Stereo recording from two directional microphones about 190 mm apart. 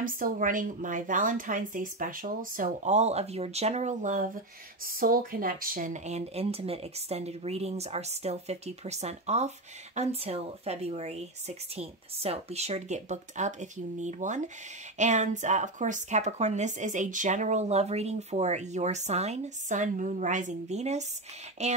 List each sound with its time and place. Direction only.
0.0 s speech: 45° right (ahead or behind)